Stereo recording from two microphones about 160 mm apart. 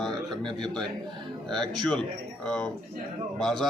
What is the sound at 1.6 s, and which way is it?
Speech, 25° right (ahead or behind).